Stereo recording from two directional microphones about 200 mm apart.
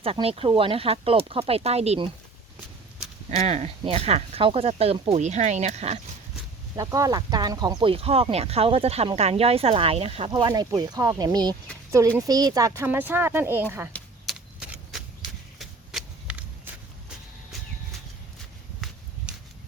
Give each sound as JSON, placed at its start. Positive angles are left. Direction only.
{"t": 0.0, "sound": "speech", "side_deg": -30}
{"t": 3.2, "sound": "speech", "side_deg": -35}
{"t": 6.7, "sound": "speech", "side_deg": -15}
{"t": 13.9, "sound": "a sound", "side_deg": 0}